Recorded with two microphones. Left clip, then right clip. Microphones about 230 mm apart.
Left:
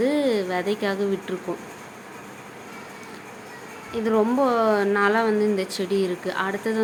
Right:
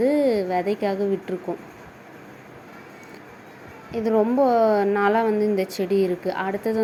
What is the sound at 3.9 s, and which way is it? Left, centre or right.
Speech, centre.